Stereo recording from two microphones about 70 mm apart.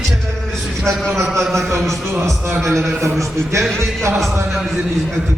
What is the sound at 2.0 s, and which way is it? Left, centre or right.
Speech, right.